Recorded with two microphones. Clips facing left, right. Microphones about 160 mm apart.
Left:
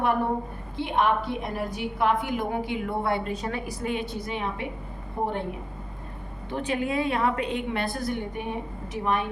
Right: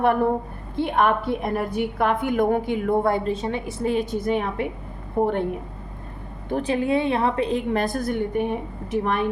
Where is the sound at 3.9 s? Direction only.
45° right (ahead or behind).